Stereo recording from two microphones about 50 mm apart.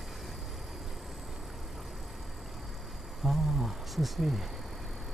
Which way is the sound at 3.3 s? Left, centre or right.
Centre.